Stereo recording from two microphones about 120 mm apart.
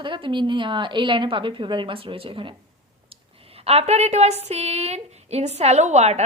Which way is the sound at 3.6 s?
60° right (ahead or behind).